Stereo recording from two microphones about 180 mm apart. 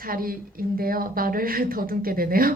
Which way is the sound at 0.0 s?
55° right (ahead or behind).